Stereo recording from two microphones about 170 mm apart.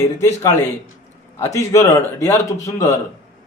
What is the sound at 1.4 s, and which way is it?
A man's voice, 20° left (ahead or behind).